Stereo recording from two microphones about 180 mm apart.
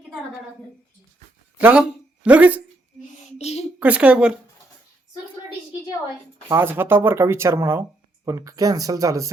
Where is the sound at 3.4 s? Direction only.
35° left (ahead or behind).